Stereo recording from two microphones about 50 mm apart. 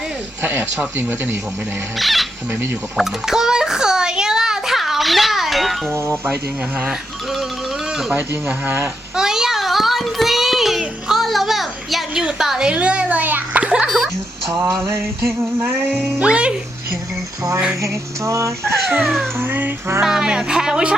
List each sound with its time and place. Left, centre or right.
0.9 s speech: right
2.0 s music: centre
3.0 s a sound: centre
5.9 s speech: right
8.4 s speech: right
9.1 s child singing: centre
12.4 s a child's voice: centre
13.9 s speech: centre
15.6 s music: right
16.2 s a child's voice: centre
17.8 s speech: right
19.0 s music: centre
19.4 s music: right
20.0 s speech: centre